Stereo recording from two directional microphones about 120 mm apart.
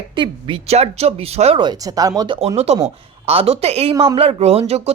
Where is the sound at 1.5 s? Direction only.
35° right (ahead or behind).